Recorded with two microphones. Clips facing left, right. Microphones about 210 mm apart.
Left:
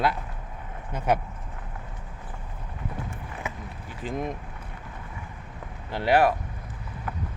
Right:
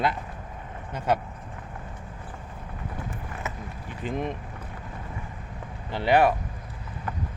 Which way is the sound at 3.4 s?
10° left (ahead or behind).